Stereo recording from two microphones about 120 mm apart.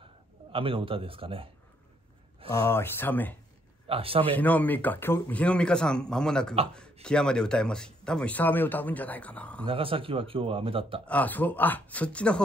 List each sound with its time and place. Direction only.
0.5 s a man's voice: 50° right (ahead or behind)
2.5 s speech: 25° left (ahead or behind)
3.8 s a man's voice: 50° right (ahead or behind)
4.4 s speech: 15° left (ahead or behind)
9.7 s a man's voice: 50° right (ahead or behind)
11.1 s speech: 15° left (ahead or behind)